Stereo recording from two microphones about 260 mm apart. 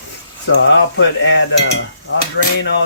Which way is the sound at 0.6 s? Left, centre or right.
Left.